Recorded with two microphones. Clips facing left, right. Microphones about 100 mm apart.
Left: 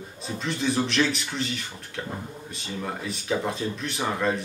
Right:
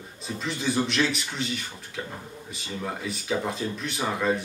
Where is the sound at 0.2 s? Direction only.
Centre (ahead or behind).